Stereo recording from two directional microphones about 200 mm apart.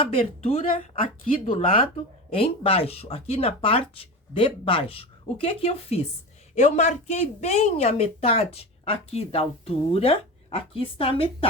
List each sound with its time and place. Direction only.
0.0 s speech: 30° left (ahead or behind)